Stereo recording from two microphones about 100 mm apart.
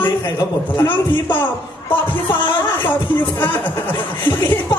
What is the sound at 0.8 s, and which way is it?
Speech, 20° left (ahead or behind).